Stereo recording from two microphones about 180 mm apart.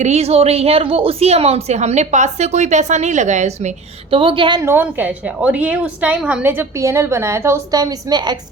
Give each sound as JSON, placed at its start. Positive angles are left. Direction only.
{"t": 0.0, "sound": "a woman's voice", "side_deg": -35}
{"t": 4.6, "sound": "a woman's voice", "side_deg": -10}